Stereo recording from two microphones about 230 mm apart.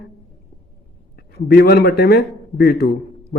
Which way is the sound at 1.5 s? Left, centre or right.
Left.